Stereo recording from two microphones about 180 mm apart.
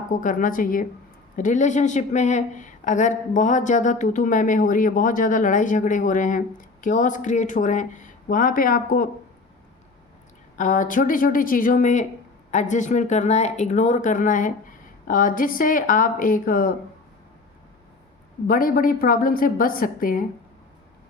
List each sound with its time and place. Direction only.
0.1 s a woman's voice: 45° left (ahead or behind)
10.6 s a woman's voice: 45° left (ahead or behind)
18.4 s a woman's voice: 50° left (ahead or behind)